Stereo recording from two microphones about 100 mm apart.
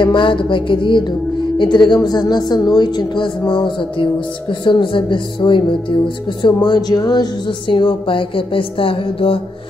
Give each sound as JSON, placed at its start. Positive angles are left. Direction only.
{"t": 0.0, "sound": "music", "side_deg": 55}
{"t": 1.6, "sound": "a woman's voice", "side_deg": 50}